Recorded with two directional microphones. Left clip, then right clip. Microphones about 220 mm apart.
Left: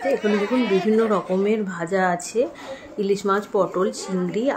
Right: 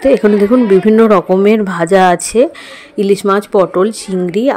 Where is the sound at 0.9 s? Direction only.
40° right (ahead or behind).